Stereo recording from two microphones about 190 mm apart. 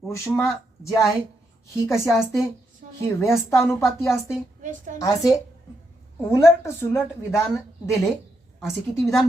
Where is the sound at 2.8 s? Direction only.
45° right (ahead or behind).